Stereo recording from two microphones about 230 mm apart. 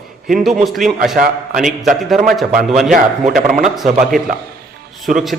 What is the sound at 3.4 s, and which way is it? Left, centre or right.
Speech, right.